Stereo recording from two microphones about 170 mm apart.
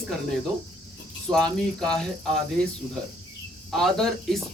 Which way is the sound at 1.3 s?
5° left (ahead or behind).